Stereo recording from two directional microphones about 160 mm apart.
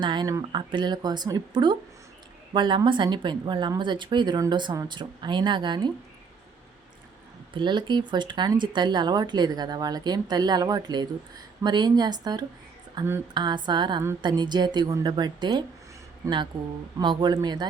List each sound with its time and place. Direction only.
0.0 s speech: 30° right (ahead or behind)
7.5 s speech: 30° right (ahead or behind)
17.0 s speech: 30° right (ahead or behind)